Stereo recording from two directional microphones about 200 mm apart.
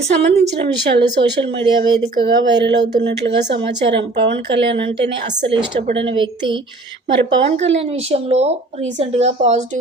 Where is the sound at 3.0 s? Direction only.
60° right (ahead or behind).